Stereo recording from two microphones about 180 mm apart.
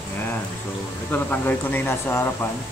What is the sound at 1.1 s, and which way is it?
Speech, 10° left (ahead or behind).